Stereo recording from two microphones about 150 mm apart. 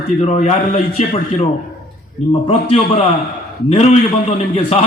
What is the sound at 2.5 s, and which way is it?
Speech, 40° left (ahead or behind).